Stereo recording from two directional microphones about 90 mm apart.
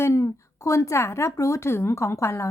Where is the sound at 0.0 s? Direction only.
35° left (ahead or behind).